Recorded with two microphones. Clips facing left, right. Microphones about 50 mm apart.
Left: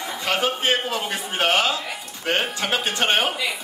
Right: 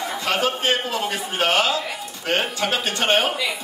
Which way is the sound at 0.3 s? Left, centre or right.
Left.